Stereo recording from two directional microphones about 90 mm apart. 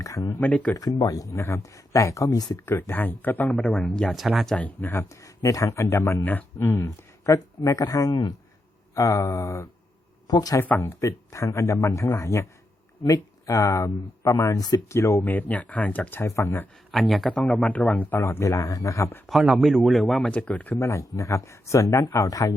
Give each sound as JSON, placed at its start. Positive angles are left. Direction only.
{"t": 0.0, "sound": "speech", "side_deg": 40}
{"t": 0.3, "sound": "speech", "side_deg": 15}
{"t": 1.0, "sound": "speech", "side_deg": 40}
{"t": 2.6, "sound": "speech", "side_deg": 25}
{"t": 4.1, "sound": "speech", "side_deg": 0}
{"t": 4.5, "sound": "speech", "side_deg": 20}
{"t": 5.2, "sound": "speech", "side_deg": 40}
{"t": 10.2, "sound": "speech", "side_deg": 45}
{"t": 10.8, "sound": "speech", "side_deg": 35}
{"t": 15.2, "sound": "speech", "side_deg": 20}
{"t": 16.9, "sound": "speech", "side_deg": 0}
{"t": 19.3, "sound": "speech", "side_deg": 0}
{"t": 20.3, "sound": "speech", "side_deg": 15}
{"t": 20.7, "sound": "speech", "side_deg": 35}